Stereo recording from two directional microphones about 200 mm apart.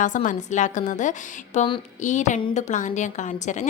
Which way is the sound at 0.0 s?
40° left (ahead or behind).